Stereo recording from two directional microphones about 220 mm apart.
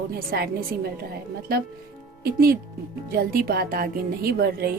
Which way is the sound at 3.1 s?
45° right (ahead or behind).